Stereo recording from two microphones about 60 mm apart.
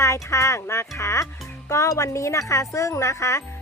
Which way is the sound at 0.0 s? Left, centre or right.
Left.